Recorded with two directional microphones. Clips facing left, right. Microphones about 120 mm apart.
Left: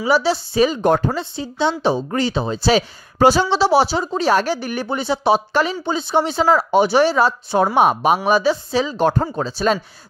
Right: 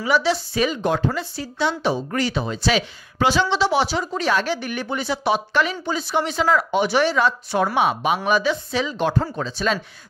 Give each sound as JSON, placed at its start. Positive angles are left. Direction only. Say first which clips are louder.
{"t": 0.0, "sound": "speech", "louder": "left 3 dB", "side_deg": 35}
{"t": 0.8, "sound": "speech", "louder": "left 5 dB", "side_deg": 50}
{"t": 1.1, "sound": "speech", "louder": "left 3 dB", "side_deg": 25}